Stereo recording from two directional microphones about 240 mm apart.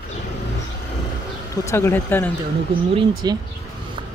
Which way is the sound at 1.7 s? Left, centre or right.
Centre.